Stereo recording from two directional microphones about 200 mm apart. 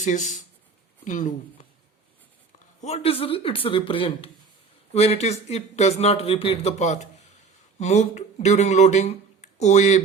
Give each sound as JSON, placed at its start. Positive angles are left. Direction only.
{"t": 0.0, "sound": "speech", "side_deg": 35}
{"t": 2.8, "sound": "a man's voice", "side_deg": 30}